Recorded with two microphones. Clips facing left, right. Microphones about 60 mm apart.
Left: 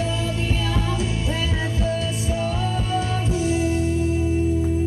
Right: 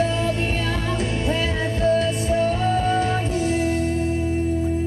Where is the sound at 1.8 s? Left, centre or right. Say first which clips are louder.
Right 9 dB; right.